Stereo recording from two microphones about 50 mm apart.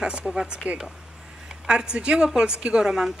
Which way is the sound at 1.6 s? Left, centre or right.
Centre.